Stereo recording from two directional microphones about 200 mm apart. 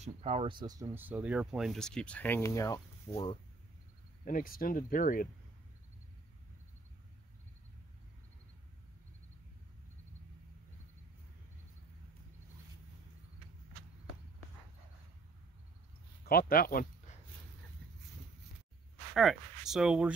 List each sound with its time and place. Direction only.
0.0 s speech: 30° right (ahead or behind); by 3.3 s 20° left (ahead or behind)
4.2 s speech: 45° left (ahead or behind)
16.3 s speech: 50° left (ahead or behind)
19.1 s speech: centre (ahead or behind)